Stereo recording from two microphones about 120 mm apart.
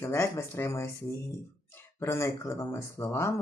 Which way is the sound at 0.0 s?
20° left (ahead or behind).